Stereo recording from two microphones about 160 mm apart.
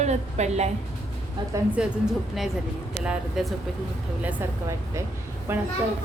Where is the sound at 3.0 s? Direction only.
5° right (ahead or behind).